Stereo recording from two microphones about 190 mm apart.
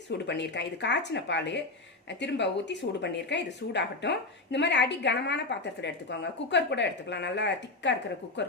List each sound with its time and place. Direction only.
0.3 s a woman's voice: 65° left (ahead or behind)